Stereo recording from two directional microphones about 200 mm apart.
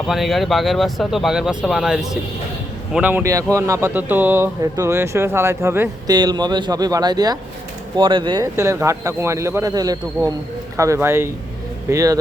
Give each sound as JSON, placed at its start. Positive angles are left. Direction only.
{"t": 0.1, "sound": "speech", "side_deg": 0}